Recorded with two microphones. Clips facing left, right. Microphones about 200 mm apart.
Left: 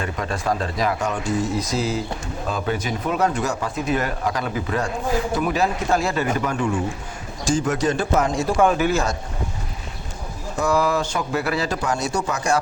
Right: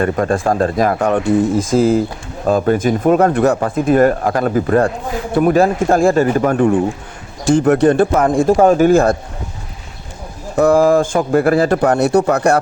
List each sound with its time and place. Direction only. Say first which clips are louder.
0.0 s a man's voice: right 10 dB; 50° right (ahead or behind)
10.6 s speech: right 10 dB; 50° right (ahead or behind)